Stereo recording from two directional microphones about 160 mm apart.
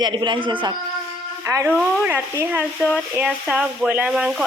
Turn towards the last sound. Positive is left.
turn(degrees=-5)  # may be behind; listen again after turning